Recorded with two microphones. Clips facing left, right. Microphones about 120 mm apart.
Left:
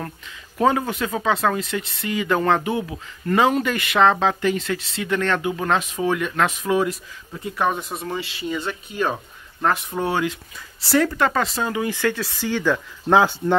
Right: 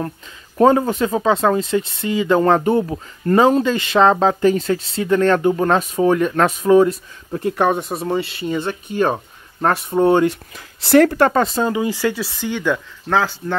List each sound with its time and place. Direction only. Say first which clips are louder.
0.6 s speech: right 6 dB; 35° right (ahead or behind)
8.4 s speech: right 5 dB; 50° right (ahead or behind)
8.9 s speech: right 6 dB; 35° right (ahead or behind)
10.9 s speech: right 7 dB; 50° right (ahead or behind)
11.7 s speech: right 3 dB; 20° right (ahead or behind)
12.4 s speech: right 1 dB; 5° left (ahead or behind)
13.1 s speech: left 3 dB; 20° left (ahead or behind)